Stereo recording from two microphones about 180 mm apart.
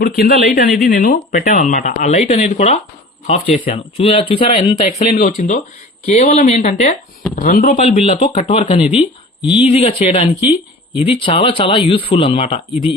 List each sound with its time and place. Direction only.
0.0 s a woman's voice: 60° left (ahead or behind)
7.9 s speech: 35° left (ahead or behind)
10.4 s speech: 10° right (ahead or behind)
11.1 s speech: 30° left (ahead or behind)